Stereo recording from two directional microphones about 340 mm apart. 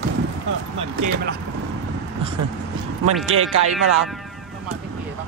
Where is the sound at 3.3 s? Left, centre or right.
Right.